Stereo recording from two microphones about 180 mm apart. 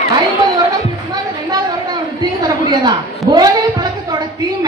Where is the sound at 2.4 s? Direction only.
25° right (ahead or behind).